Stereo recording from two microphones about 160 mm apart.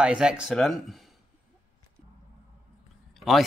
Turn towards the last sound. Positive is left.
turn(degrees=0)  # may be behind; listen again after turning